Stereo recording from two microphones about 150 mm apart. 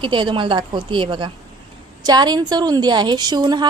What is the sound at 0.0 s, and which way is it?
A woman's voice, 35° right (ahead or behind).